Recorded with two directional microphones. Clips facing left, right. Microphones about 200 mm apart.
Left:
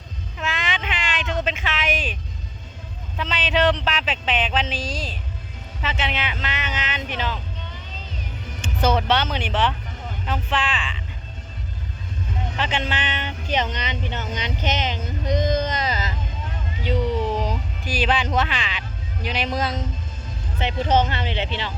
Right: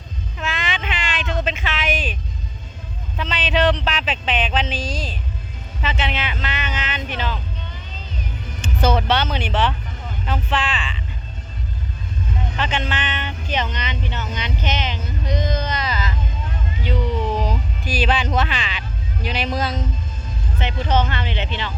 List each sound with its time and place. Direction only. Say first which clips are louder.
0.3 s a sound: right 1 dB; 15° left (ahead or behind)
3.2 s speech: right 1 dB; 10° left (ahead or behind)
9.0 s speech: right 1 dB; 10° left (ahead or behind)
12.9 s speech: right 1 dB; 35° left (ahead or behind)
16.8 s a sound: left 1 dB; 40° left (ahead or behind)
17.3 s music: right 2 dB; 15° left (ahead or behind)
19.2 s speech: right 1 dB; 15° left (ahead or behind)
20.6 s speech: left 1 dB; 40° left (ahead or behind)